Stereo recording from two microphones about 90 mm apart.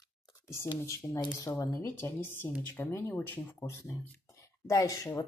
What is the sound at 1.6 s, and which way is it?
A woman's voice, 30° left (ahead or behind).